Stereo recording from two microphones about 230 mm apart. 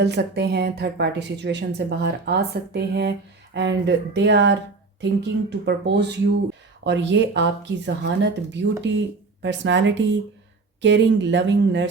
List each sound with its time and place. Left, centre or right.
0.0 s a woman's voice: right